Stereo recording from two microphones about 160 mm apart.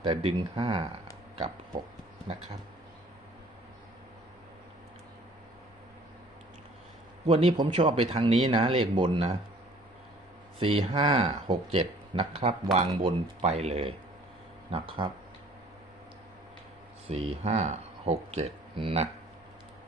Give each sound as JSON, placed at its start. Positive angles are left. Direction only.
{"t": 0.0, "sound": "speech", "side_deg": -35}
{"t": 2.3, "sound": "speech", "side_deg": -40}
{"t": 7.3, "sound": "speech", "side_deg": -40}
{"t": 10.6, "sound": "speech", "side_deg": -35}
{"t": 17.1, "sound": "speech", "side_deg": -40}